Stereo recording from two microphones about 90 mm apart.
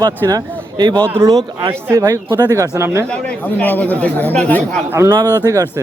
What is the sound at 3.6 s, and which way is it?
Speech, 20° left (ahead or behind).